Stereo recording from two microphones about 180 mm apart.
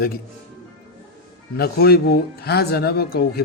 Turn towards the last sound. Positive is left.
turn(degrees=60)  # may be behind; listen again after turning